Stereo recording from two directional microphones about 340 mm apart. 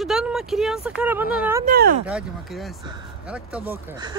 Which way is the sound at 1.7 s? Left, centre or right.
Right.